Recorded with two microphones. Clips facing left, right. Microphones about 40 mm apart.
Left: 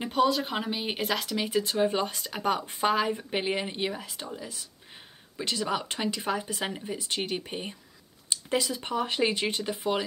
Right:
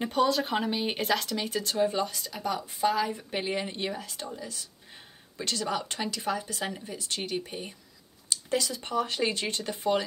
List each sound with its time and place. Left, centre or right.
0.0 s speech: centre; by 3.3 s left
3.3 s speech: left
8.3 s speech: centre